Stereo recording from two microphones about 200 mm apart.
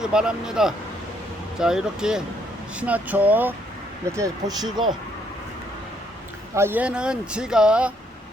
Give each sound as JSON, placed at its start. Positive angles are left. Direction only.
{"t": 0.0, "sound": "speech", "side_deg": -5}
{"t": 6.5, "sound": "speech", "side_deg": -10}